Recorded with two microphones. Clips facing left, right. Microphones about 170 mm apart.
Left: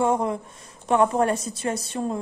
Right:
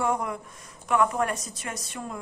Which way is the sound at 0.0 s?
25° left (ahead or behind).